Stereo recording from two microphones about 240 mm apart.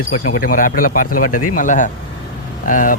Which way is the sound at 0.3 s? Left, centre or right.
Left.